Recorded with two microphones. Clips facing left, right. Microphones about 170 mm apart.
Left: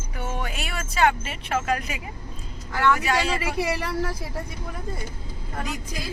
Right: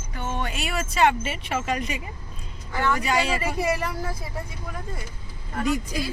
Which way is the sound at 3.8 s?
70° left (ahead or behind).